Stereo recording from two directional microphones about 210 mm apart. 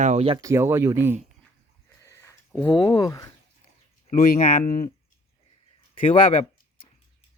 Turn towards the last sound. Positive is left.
turn(degrees=30)  # may be behind; listen again after turning